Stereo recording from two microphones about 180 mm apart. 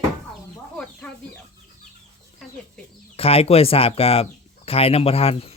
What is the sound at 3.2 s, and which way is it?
Speech, 30° left (ahead or behind).